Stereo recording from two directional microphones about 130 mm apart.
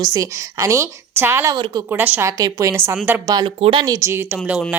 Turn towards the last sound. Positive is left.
turn(degrees=-20)  # may be behind; listen again after turning